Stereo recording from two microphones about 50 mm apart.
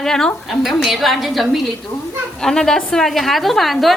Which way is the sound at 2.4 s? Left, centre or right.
Centre.